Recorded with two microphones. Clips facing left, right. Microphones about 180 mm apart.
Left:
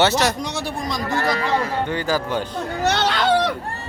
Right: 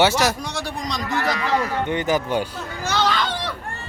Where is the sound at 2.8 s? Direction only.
65° left (ahead or behind).